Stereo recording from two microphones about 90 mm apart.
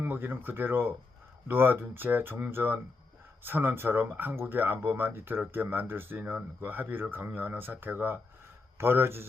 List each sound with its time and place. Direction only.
0.0 s speech: 25° right (ahead or behind)